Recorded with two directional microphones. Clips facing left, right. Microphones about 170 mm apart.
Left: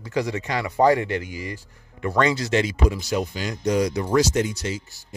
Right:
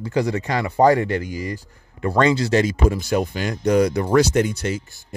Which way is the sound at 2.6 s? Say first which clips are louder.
Right 4 dB; 50° right (ahead or behind).